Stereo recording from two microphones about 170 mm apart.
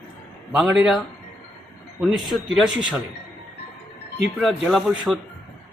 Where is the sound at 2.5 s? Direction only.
5° right (ahead or behind).